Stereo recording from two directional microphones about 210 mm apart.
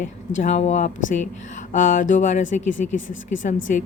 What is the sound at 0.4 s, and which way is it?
Speech, 35° left (ahead or behind).